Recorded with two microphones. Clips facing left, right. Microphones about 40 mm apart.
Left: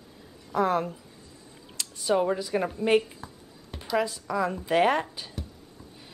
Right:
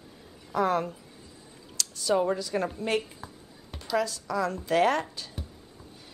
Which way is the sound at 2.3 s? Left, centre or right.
Centre.